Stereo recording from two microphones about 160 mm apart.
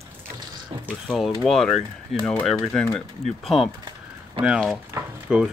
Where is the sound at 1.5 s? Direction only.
Centre (ahead or behind).